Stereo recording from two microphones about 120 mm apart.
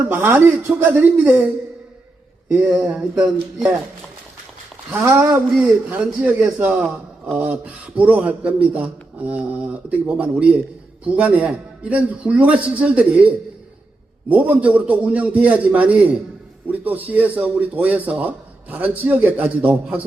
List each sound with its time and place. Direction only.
0.0 s a man's voice: 15° right (ahead or behind)
2.5 s a man's voice: 15° right (ahead or behind)
4.9 s a man's voice: 20° right (ahead or behind)